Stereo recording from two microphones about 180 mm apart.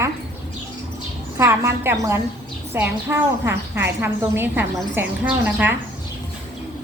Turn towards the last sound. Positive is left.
turn(degrees=-10)  # may be behind; listen again after turning